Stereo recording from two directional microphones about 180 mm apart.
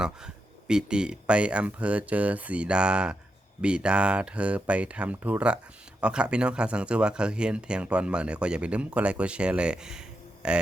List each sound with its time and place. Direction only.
0.7 s speech: 5° right (ahead or behind)